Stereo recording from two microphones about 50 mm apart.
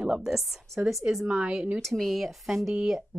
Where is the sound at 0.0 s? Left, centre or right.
Centre.